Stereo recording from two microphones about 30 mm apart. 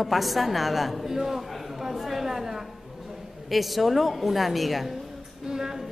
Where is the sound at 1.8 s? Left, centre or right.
Centre.